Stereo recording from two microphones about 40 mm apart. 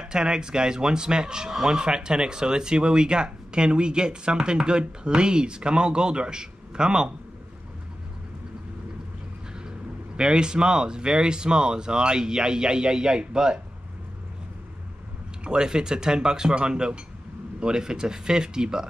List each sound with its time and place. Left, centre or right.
0.0 s speech: centre
9.7 s speech: centre
15.4 s speech: centre